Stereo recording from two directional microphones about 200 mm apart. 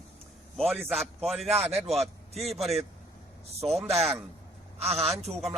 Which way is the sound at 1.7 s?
30° right (ahead or behind).